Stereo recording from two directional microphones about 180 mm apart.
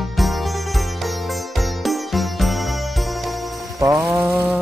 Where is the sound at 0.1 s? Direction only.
Centre (ahead or behind).